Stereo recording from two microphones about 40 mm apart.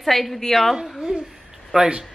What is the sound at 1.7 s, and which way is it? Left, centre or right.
Speech, centre.